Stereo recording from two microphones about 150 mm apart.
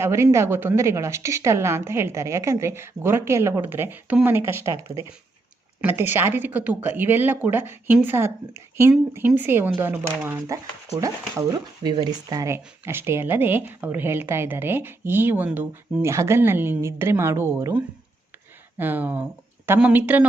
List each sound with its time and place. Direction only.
0.0 s speech: 15° right (ahead or behind)
5.8 s speech: 15° right (ahead or behind)